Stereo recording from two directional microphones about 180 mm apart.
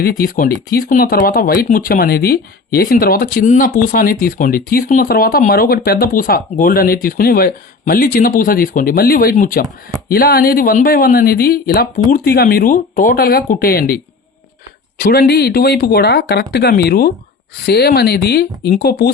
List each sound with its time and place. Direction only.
0.0 s speech: 55° left (ahead or behind)